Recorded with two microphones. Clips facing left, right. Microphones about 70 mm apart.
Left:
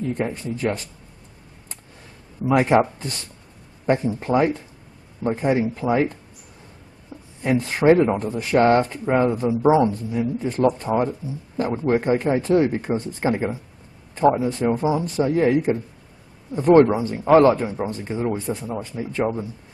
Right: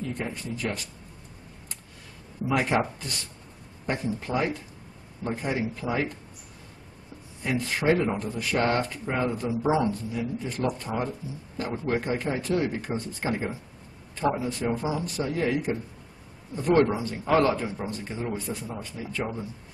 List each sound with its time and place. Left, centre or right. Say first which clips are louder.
0.1 s speech: left 7 dB; left
2.4 s speech: left 8 dB; left
7.1 s a sound: left 7 dB; left
7.4 s speech: left 8 dB; left